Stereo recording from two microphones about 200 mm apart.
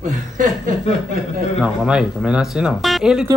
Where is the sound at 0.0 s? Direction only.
40° right (ahead or behind).